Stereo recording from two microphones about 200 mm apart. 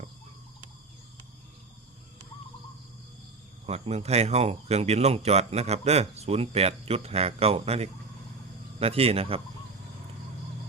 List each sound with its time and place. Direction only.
3.7 s speech: 30° right (ahead or behind)